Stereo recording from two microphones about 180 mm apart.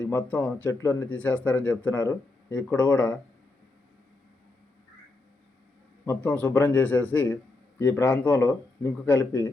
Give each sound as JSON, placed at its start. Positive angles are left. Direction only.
{"t": 0.0, "sound": "speech", "side_deg": 20}
{"t": 0.3, "sound": "speech", "side_deg": 10}
{"t": 6.1, "sound": "speech", "side_deg": 10}